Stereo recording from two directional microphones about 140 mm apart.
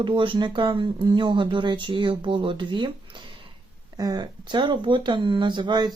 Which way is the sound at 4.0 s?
30° right (ahead or behind).